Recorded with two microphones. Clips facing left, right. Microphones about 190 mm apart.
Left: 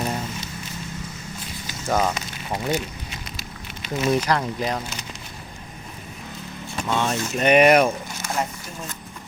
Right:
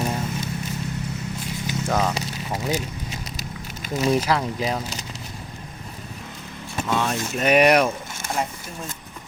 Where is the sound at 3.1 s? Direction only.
40° right (ahead or behind).